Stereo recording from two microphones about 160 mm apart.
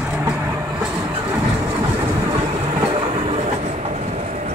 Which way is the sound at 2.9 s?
35° right (ahead or behind).